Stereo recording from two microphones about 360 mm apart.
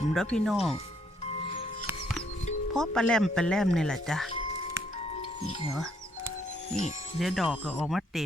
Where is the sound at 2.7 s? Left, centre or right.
Centre.